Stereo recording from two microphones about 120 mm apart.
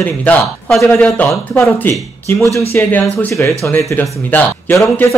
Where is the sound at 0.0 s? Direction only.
15° left (ahead or behind).